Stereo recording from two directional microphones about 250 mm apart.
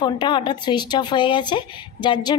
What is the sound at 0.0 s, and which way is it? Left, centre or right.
Speech, centre.